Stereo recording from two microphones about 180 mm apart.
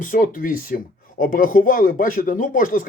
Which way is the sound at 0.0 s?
50° left (ahead or behind).